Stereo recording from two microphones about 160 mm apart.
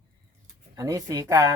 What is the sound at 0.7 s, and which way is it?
Speech, 20° right (ahead or behind).